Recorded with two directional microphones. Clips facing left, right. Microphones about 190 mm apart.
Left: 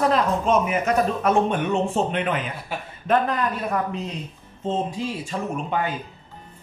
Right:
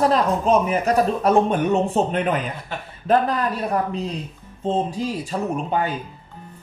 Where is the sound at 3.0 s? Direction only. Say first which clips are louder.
Right 2 dB; 35° right (ahead or behind).